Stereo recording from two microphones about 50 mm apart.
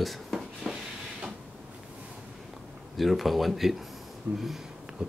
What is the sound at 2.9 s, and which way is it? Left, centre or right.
Speech, centre.